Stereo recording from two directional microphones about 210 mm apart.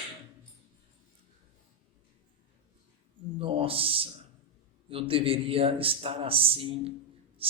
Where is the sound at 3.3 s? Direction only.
25° right (ahead or behind).